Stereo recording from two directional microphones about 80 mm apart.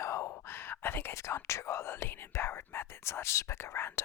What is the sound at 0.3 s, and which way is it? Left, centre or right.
Speech, left.